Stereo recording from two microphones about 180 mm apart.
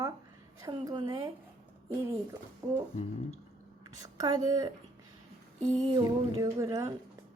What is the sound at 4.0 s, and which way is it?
Speech, 20° right (ahead or behind).